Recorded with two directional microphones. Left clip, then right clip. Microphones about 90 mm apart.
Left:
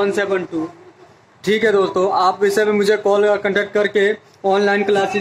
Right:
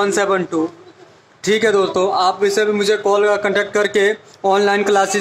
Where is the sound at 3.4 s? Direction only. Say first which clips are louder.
Right 1 dB; 15° right (ahead or behind).